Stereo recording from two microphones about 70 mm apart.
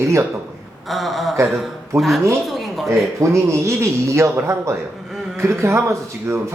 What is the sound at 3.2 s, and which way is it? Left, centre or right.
A man's voice, right.